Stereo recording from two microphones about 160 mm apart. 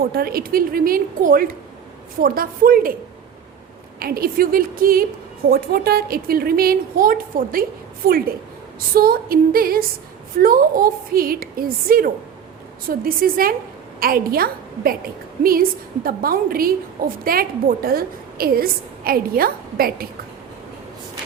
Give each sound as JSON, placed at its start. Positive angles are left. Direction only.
{"t": 0.0, "sound": "a woman's voice", "side_deg": -70}
{"t": 4.0, "sound": "a woman's voice", "side_deg": -70}
{"t": 16.0, "sound": "a woman's voice", "side_deg": -65}